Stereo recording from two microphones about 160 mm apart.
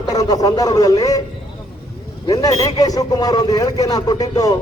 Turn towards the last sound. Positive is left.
turn(degrees=25)  # may be behind; listen again after turning